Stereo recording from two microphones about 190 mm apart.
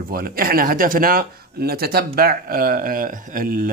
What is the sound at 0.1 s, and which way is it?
Speech, 50° right (ahead or behind).